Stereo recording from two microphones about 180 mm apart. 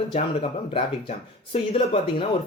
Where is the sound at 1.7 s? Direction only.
30° left (ahead or behind).